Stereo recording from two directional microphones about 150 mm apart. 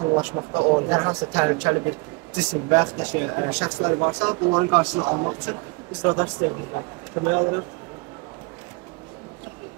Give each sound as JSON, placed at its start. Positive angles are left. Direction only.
{"t": 0.2, "sound": "speech", "side_deg": -30}